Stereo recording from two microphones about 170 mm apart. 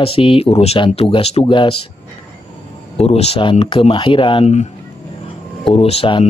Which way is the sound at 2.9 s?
35° left (ahead or behind).